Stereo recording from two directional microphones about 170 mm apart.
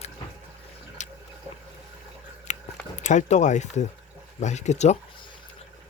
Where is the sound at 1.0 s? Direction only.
45° left (ahead or behind).